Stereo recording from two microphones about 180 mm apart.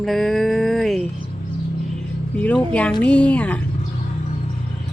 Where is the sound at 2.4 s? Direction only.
10° left (ahead or behind).